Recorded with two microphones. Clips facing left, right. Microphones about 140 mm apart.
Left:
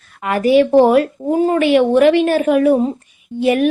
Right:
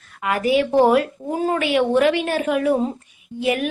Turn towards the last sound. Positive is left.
turn(degrees=30)  # may be behind; listen again after turning